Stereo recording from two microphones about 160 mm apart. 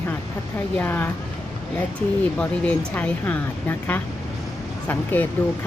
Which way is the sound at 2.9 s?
10° left (ahead or behind).